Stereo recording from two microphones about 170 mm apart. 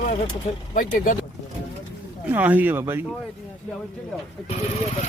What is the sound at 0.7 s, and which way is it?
Speech, 50° left (ahead or behind).